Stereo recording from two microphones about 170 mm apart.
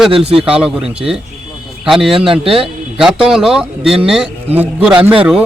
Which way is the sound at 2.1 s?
30° right (ahead or behind).